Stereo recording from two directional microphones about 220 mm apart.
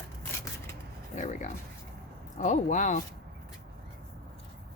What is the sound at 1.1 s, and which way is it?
A woman's voice, 35° left (ahead or behind).